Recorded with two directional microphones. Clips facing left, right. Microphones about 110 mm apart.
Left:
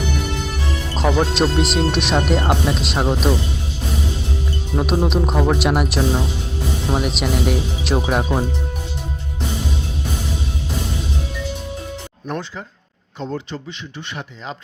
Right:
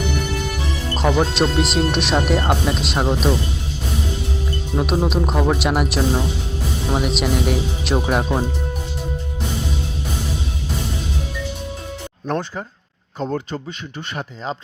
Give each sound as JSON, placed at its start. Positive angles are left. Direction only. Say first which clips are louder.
{"t": 0.9, "sound": "speech", "louder": "even", "side_deg": 0}
{"t": 4.8, "sound": "speech", "louder": "left 1 dB", "side_deg": 0}
{"t": 13.1, "sound": "speech", "louder": "right 3 dB", "side_deg": -40}